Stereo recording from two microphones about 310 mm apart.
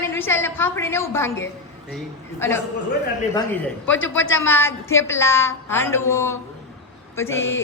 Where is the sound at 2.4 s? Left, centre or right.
Centre.